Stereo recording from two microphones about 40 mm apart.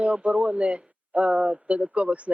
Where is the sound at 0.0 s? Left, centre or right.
Right.